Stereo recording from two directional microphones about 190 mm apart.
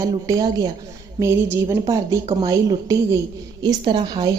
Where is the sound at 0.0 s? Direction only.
20° right (ahead or behind).